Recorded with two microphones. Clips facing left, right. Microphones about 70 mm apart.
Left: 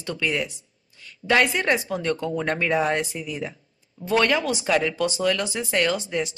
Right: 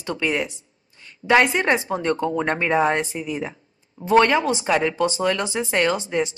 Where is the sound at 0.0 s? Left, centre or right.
Right.